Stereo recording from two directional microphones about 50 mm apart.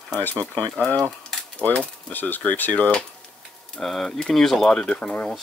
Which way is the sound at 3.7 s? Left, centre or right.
Centre.